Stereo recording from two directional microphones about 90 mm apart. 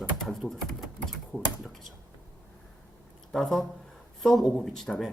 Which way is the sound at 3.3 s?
5° left (ahead or behind).